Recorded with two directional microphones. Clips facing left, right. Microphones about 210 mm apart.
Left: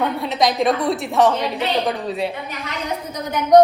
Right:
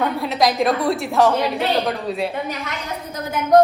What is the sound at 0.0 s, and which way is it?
A woman's voice, centre (ahead or behind).